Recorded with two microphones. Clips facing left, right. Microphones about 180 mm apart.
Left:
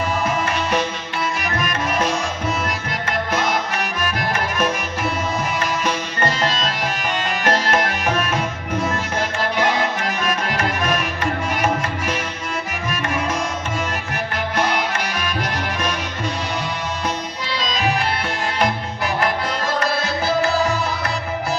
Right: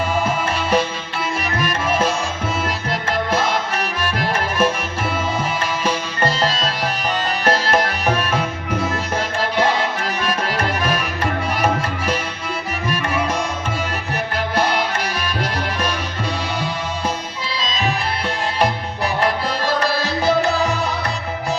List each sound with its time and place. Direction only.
0.3 s music: 30° right (ahead or behind)
5.8 s music: 30° right (ahead or behind)
9.6 s music: 30° right (ahead or behind)
14.5 s music: 35° right (ahead or behind)